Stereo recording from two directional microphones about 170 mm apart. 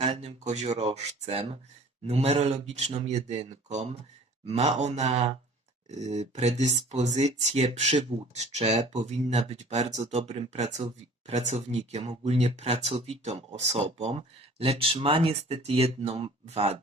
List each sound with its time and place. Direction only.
0.0 s speech: 35° right (ahead or behind)